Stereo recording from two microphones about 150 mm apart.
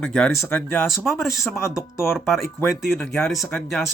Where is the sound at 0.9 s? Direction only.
Centre (ahead or behind).